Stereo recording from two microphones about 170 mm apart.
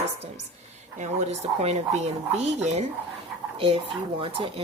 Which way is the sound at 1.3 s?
40° right (ahead or behind).